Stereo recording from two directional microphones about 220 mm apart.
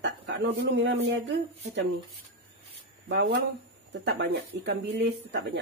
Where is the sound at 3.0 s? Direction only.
50° right (ahead or behind).